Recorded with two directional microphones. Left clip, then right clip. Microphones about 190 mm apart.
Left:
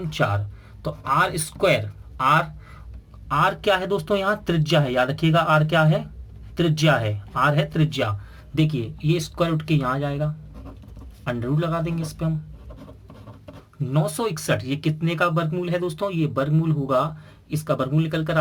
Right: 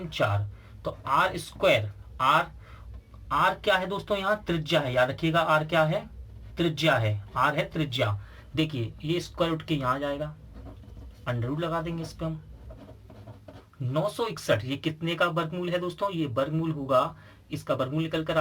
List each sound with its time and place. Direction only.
0.8 s speech: 40° left (ahead or behind)
8.5 s speech: 35° left (ahead or behind)
11.3 s speech: 40° left (ahead or behind)
13.9 s speech: 35° left (ahead or behind)